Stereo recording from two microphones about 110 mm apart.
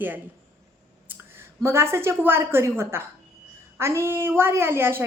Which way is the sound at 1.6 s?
25° right (ahead or behind).